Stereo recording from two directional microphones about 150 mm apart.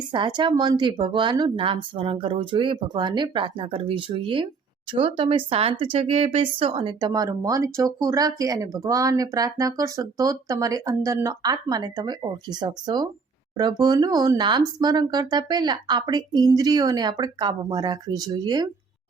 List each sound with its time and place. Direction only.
0.1 s speech: 30° right (ahead or behind)